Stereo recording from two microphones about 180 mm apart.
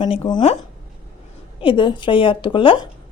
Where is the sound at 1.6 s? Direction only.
30° left (ahead or behind).